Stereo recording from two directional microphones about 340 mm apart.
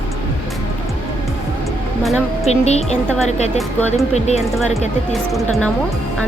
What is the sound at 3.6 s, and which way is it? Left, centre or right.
Speech, centre.